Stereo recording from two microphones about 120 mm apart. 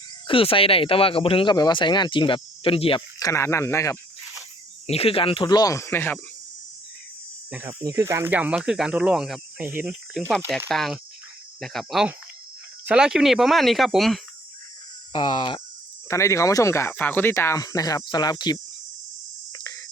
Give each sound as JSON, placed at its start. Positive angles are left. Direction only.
{"t": 0.3, "sound": "speech", "side_deg": 50}
{"t": 1.5, "sound": "speech", "side_deg": 35}
{"t": 3.2, "sound": "speech", "side_deg": 25}
{"t": 4.9, "sound": "speech", "side_deg": 55}
{"t": 7.9, "sound": "speech", "side_deg": -25}
{"t": 8.3, "sound": "speech", "side_deg": -10}
{"t": 9.6, "sound": "speech", "side_deg": -15}
{"t": 15.1, "sound": "speech", "side_deg": 40}
{"t": 16.0, "sound": "speech", "side_deg": 25}
{"t": 19.5, "sound": "cricket", "side_deg": 30}